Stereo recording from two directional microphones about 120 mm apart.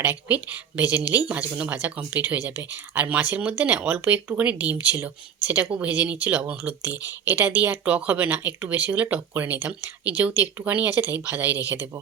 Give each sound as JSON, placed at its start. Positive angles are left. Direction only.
{"t": 0.0, "sound": "a woman's voice", "side_deg": -15}